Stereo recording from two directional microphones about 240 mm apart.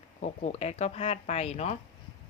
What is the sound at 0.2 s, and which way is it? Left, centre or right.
A woman's voice, left.